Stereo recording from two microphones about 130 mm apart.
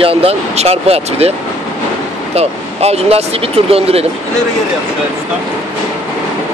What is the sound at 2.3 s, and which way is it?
Speech, 55° right (ahead or behind).